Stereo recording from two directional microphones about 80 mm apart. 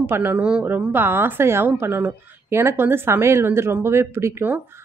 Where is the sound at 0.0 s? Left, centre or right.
Right.